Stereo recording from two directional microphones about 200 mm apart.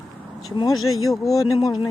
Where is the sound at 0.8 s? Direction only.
90° left.